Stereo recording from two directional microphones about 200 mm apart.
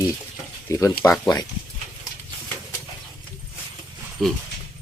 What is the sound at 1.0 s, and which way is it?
Speech, 5° left (ahead or behind).